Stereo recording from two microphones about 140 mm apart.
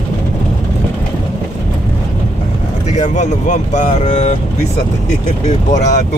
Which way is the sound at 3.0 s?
60° left (ahead or behind).